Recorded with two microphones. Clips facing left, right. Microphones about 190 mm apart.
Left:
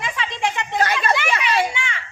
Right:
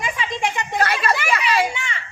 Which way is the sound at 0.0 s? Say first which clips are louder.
Even; 10° right (ahead or behind).